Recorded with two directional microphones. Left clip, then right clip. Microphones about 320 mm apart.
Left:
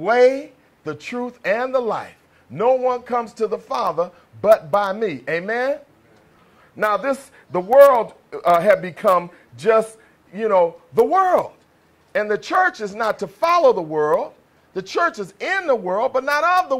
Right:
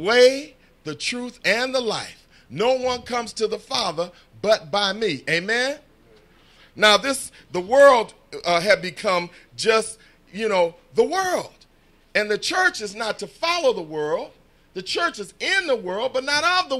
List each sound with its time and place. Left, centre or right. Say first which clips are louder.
0.0 s speech: left 1 dB; centre
6.8 s speech: right 3 dB; centre
15.7 s speech: left 4 dB; centre